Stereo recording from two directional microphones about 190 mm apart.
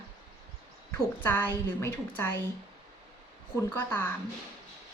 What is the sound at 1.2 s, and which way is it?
Speech, 10° left (ahead or behind).